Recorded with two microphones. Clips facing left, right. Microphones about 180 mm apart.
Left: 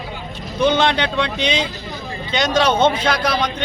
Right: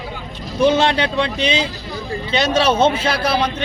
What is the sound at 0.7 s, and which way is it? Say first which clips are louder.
Speech: even; 35° right (ahead or behind).